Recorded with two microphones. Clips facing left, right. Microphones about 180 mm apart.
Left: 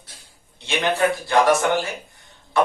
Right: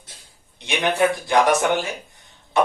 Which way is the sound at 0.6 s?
15° right (ahead or behind).